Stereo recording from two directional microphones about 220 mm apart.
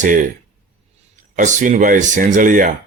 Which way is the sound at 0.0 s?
35° right (ahead or behind).